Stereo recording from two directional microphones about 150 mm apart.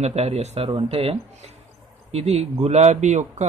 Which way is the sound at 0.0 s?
45° right (ahead or behind).